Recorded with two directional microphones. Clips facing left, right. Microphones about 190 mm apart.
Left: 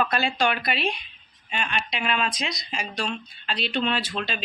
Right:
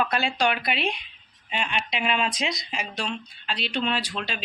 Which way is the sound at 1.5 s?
20° right (ahead or behind).